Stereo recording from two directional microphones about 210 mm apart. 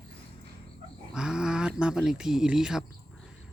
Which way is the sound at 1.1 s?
5° right (ahead or behind).